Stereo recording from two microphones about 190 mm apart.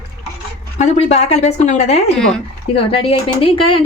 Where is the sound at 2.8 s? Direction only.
30° left (ahead or behind).